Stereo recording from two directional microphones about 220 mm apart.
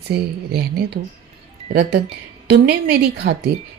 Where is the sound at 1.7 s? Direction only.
45° right (ahead or behind).